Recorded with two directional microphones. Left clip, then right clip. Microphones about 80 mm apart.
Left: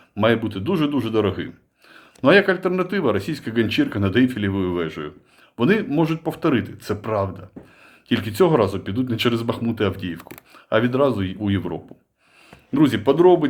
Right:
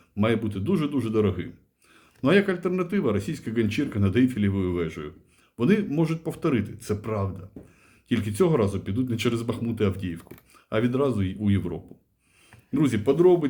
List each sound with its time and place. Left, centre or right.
0.2 s speech: left